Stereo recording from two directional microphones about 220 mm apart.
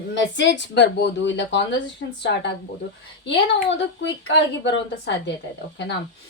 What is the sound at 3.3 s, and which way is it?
A woman's voice, 55° left (ahead or behind).